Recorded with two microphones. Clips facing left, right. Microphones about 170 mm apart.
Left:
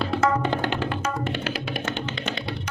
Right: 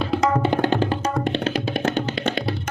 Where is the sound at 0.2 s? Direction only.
15° right (ahead or behind).